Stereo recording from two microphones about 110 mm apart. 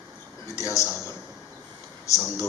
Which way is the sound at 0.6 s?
30° left (ahead or behind).